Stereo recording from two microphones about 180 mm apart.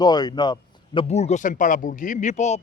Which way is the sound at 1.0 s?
35° left (ahead or behind).